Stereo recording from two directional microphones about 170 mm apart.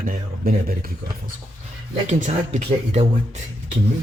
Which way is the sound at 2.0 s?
45° right (ahead or behind).